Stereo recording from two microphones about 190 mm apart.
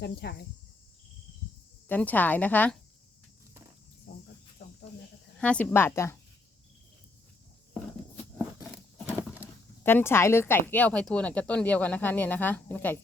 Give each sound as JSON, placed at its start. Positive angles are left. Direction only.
{"t": 0.0, "sound": "cricket", "side_deg": 60}
{"t": 1.9, "sound": "speech", "side_deg": 10}
{"t": 4.1, "sound": "cricket", "side_deg": 50}
{"t": 5.4, "sound": "speech", "side_deg": 5}
{"t": 9.1, "sound": "a sound", "side_deg": -10}
{"t": 9.8, "sound": "speech", "side_deg": 10}